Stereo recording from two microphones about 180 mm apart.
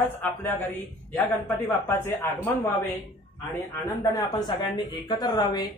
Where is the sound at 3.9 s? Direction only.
20° left (ahead or behind).